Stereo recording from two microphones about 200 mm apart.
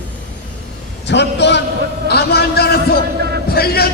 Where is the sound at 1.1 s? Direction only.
60° left (ahead or behind).